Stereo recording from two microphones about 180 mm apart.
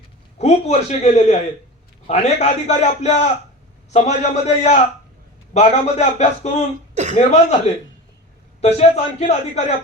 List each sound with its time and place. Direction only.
0.3 s a man's voice: 35° left (ahead or behind)
6.9 s a sound: 40° right (ahead or behind)
7.2 s a man's voice: 35° left (ahead or behind)